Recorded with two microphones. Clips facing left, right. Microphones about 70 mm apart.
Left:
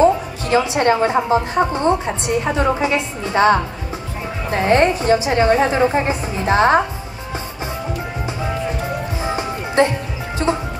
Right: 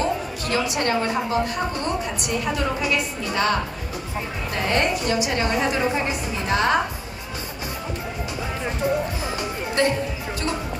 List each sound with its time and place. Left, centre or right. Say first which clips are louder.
0.0 s a woman's voice: left 10 dB; left
9.2 s music: left 5 dB; left